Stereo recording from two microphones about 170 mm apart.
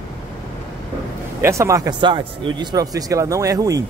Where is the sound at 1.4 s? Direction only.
15° right (ahead or behind).